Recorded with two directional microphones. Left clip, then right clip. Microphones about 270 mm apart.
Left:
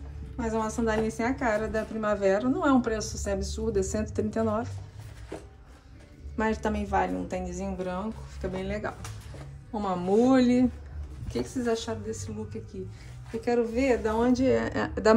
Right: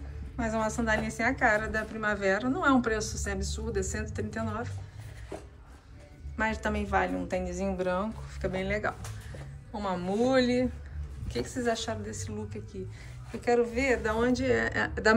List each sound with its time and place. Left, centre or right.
0.4 s a woman's voice: centre
6.3 s a woman's voice: left
13.4 s speech: centre